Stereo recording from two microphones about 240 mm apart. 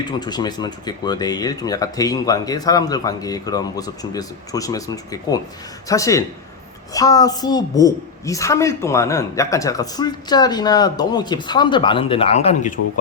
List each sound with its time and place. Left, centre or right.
0.0 s a woman's voice: centre